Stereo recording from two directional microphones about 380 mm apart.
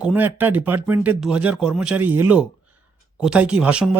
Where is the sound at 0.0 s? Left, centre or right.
Centre.